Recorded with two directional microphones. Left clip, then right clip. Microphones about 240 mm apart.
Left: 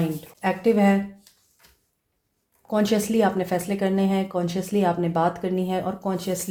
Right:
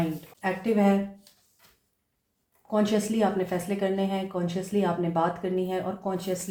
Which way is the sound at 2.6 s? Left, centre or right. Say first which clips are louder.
Left 3 dB; left.